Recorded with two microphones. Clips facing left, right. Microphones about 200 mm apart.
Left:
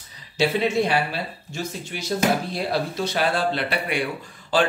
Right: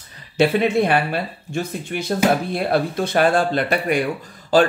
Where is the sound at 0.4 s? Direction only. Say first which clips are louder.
Right 4 dB; 55° right (ahead or behind).